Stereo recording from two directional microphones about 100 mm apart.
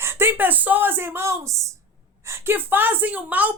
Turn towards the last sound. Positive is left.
turn(degrees=-15)  # may be behind; listen again after turning